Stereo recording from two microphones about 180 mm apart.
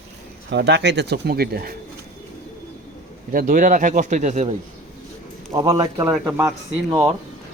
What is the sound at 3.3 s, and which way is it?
Speech, 50° right (ahead or behind).